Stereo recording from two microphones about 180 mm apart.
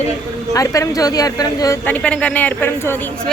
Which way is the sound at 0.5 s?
20° left (ahead or behind).